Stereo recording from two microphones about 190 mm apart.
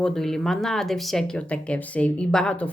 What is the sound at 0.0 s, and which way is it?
Speech, centre (ahead or behind).